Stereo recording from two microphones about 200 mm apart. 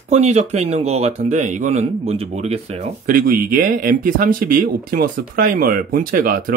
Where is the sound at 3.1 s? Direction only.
45° right (ahead or behind).